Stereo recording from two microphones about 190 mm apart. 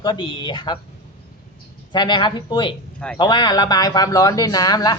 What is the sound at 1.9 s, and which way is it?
Speech, 25° left (ahead or behind).